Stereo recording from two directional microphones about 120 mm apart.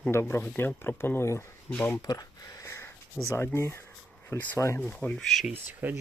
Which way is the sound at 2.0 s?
35° left (ahead or behind).